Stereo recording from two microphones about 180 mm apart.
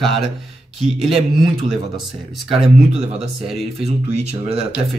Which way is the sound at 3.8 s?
35° right (ahead or behind).